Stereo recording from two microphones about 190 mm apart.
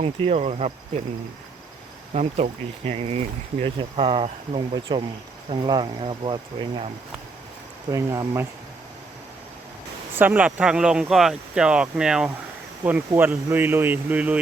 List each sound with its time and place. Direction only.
0.0 s speech: 35° right (ahead or behind)
2.1 s speech: 35° right (ahead or behind); by 8.4 s 15° right (ahead or behind)
10.2 s speech: 10° right (ahead or behind)